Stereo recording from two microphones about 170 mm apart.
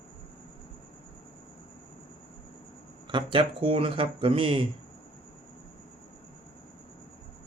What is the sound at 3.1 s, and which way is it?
Speech, 30° right (ahead or behind).